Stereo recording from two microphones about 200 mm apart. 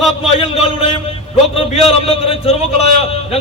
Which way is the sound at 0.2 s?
30° left (ahead or behind).